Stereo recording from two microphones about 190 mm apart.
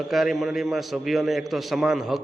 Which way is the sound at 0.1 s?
Centre (ahead or behind).